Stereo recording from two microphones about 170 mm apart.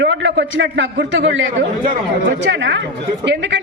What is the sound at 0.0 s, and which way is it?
A man's voice, 90° right.